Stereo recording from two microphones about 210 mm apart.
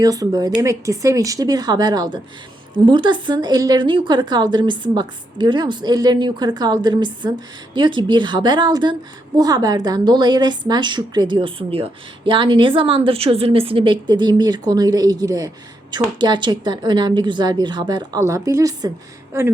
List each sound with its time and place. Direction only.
0.0 s a woman's voice: 15° right (ahead or behind)